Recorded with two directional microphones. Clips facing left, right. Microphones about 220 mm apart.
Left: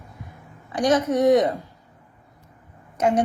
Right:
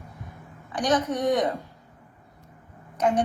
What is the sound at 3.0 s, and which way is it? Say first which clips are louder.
Speech: left 3 dB; 25° left (ahead or behind).